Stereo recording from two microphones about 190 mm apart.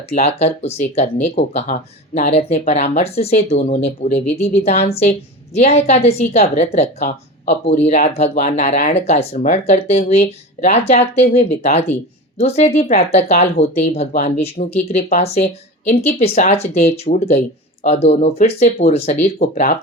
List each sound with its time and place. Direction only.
0.1 s a woman's voice: 35° left (ahead or behind)